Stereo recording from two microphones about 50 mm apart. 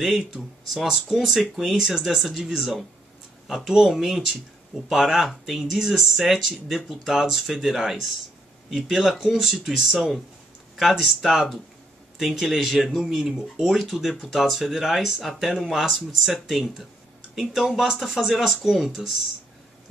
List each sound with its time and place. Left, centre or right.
0.7 s speech: centre